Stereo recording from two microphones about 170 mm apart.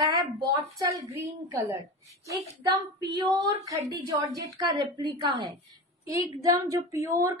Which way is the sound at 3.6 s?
20° right (ahead or behind).